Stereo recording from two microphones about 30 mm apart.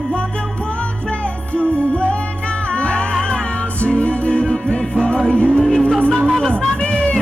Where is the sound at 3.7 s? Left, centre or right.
Left.